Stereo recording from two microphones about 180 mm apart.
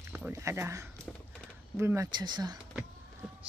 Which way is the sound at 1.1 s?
5° left (ahead or behind).